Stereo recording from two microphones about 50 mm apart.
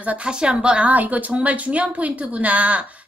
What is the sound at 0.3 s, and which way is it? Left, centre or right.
Speech, centre.